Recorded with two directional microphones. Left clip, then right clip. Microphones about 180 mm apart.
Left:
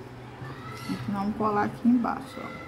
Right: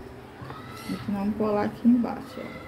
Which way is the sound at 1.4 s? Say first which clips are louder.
Even; 30° left (ahead or behind).